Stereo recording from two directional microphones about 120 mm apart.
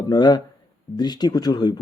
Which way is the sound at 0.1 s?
40° left (ahead or behind).